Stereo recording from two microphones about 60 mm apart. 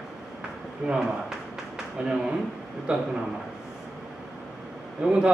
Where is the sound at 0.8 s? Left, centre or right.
Centre.